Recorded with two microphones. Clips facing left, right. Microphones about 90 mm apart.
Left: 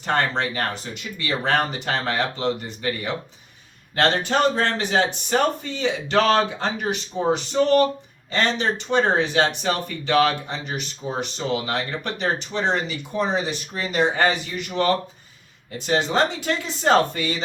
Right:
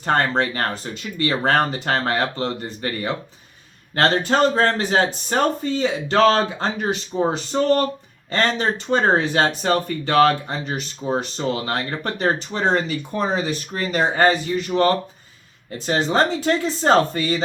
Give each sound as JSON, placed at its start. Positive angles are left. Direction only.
{"t": 0.0, "sound": "speech", "side_deg": -40}